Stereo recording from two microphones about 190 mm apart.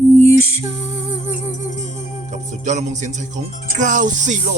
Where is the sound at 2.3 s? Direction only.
40° right (ahead or behind).